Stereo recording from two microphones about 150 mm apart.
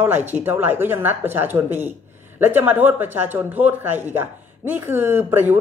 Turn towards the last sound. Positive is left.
turn(degrees=-15)  # may be behind; listen again after turning